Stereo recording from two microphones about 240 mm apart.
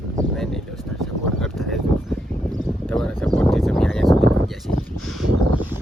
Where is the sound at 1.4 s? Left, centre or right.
Centre.